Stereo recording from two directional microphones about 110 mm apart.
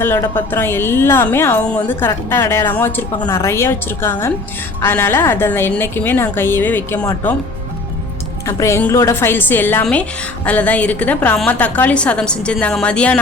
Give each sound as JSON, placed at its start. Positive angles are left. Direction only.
{"t": 0.0, "sound": "a woman's voice", "side_deg": 20}
{"t": 8.4, "sound": "a woman's voice", "side_deg": 25}